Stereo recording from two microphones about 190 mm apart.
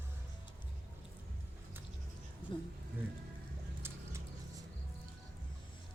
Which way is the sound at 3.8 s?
15° right (ahead or behind).